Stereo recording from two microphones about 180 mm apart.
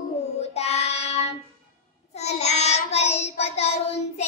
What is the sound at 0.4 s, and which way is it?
Child singing, 35° left (ahead or behind).